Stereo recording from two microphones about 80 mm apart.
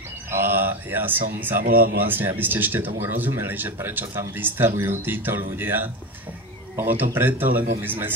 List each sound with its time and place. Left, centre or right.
0.3 s speech: right